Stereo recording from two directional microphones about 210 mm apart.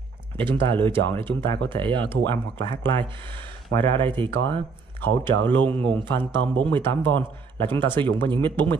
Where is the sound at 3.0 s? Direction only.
25° right (ahead or behind).